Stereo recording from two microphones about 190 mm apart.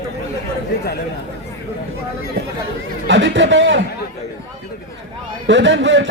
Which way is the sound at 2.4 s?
50° right (ahead or behind).